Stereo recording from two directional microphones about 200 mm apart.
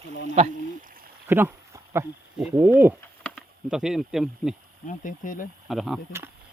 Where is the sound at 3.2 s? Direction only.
Centre (ahead or behind).